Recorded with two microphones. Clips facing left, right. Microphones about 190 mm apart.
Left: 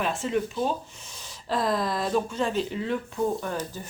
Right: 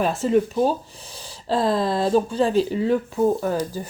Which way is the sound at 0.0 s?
40° right (ahead or behind).